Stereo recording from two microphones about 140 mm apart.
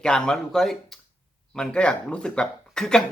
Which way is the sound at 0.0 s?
5° left (ahead or behind).